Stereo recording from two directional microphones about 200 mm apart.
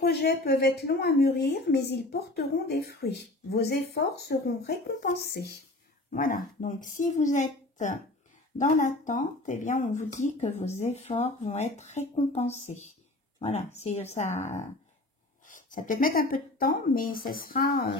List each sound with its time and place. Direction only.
0.0 s a woman's voice: 50° left (ahead or behind)
8.5 s speech: 40° left (ahead or behind)
15.4 s a woman's voice: 40° left (ahead or behind)